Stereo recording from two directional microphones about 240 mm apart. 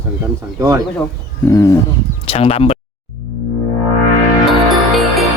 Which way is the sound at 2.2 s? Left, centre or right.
Left.